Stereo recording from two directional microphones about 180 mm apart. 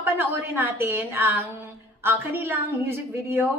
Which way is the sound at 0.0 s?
15° right (ahead or behind).